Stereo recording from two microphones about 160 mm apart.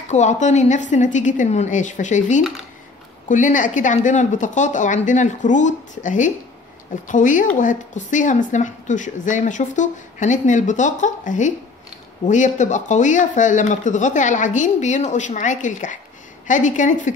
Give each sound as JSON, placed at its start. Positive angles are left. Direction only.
{"t": 0.1, "sound": "speech", "side_deg": 45}